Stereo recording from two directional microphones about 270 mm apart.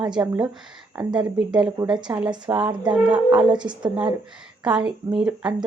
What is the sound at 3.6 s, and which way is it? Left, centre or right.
Speech, centre.